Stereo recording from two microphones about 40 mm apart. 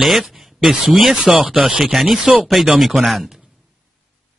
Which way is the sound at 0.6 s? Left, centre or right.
Centre.